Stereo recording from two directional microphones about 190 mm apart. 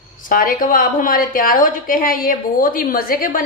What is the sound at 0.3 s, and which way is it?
A woman's voice, 50° left (ahead or behind).